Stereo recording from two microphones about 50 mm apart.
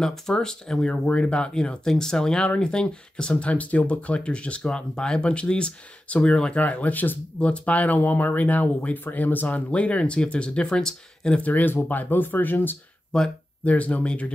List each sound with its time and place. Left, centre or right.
0.0 s speech: centre
0.8 s speech: left
6.6 s speech: left
7.3 s speech: left
9.7 s speech: left
11.4 s speech: left
13.1 s speech: centre
13.7 s speech: left